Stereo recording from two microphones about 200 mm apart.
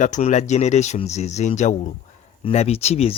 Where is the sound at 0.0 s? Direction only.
40° left (ahead or behind).